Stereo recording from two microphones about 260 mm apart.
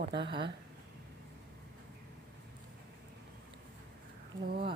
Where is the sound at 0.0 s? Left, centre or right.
Right.